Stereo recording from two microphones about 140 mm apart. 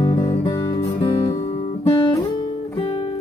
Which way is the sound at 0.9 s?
40° left (ahead or behind).